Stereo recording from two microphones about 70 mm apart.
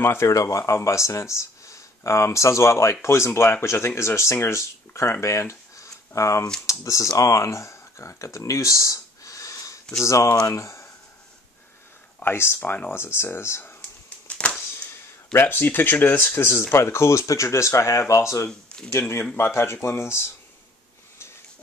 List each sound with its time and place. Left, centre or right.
0.0 s speech: left
0.3 s speech: left
12.3 s speech: left
12.6 s speech: left
12.9 s speech: left
13.7 s a sound: centre
15.3 s speech: left
18.5 s speech: centre
18.9 s speech: left